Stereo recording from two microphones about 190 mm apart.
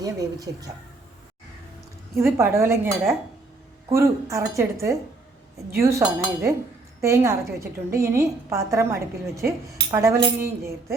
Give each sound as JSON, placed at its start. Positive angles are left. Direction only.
{"t": 0.0, "sound": "speech", "side_deg": -20}
{"t": 2.1, "sound": "a woman's voice", "side_deg": -15}
{"t": 3.9, "sound": "a woman's voice", "side_deg": -15}